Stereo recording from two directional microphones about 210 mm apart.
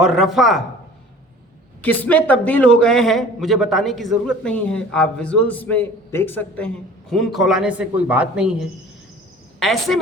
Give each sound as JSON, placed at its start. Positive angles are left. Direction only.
{"t": 0.0, "sound": "a man's voice", "side_deg": 0}
{"t": 1.8, "sound": "a man's voice", "side_deg": 5}